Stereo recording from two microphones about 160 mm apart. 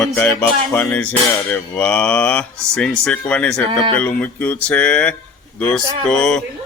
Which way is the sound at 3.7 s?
30° right (ahead or behind).